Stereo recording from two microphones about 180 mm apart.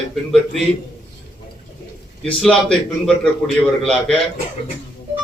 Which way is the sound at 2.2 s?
5° left (ahead or behind).